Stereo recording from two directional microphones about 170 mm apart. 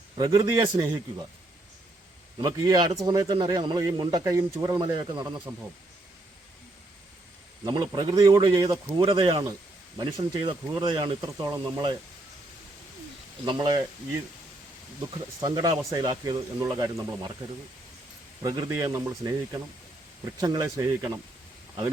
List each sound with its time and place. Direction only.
0.2 s speech: 20° right (ahead or behind)
2.4 s speech: 20° right (ahead or behind)
7.6 s speech: 25° right (ahead or behind)
8.7 s speech: 30° right (ahead or behind)
13.4 s speech: 25° right (ahead or behind)
15.4 s speech: 20° right (ahead or behind)
18.4 s speech: 20° right (ahead or behind)